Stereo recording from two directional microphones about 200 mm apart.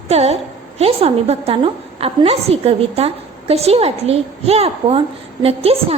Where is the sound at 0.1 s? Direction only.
30° right (ahead or behind).